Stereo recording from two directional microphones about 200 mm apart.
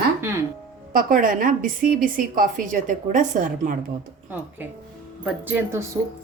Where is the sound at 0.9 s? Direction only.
45° right (ahead or behind).